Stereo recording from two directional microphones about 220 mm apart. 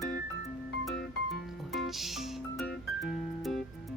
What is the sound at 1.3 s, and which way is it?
Music, centre (ahead or behind).